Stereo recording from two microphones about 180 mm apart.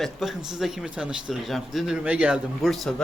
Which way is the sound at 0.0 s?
Centre (ahead or behind).